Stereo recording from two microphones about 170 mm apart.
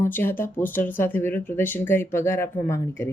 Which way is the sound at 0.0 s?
15° left (ahead or behind).